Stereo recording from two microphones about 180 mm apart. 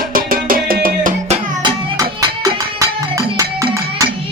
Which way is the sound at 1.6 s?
20° right (ahead or behind).